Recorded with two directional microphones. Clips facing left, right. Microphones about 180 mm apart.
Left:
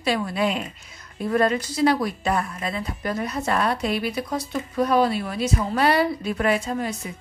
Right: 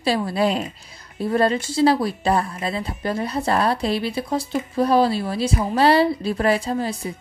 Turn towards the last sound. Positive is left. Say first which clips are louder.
# right 3 dB
turn(degrees=-30)  # may be behind; listen again after turning